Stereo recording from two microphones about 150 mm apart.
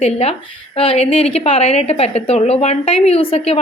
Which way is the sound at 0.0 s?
45° left (ahead or behind).